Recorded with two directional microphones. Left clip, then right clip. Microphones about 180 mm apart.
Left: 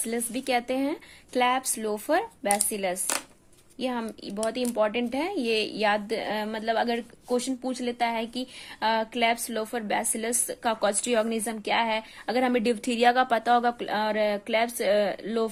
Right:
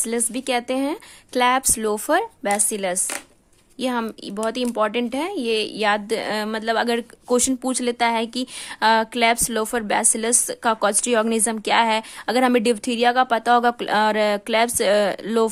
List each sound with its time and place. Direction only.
0.0 s speech: 25° right (ahead or behind)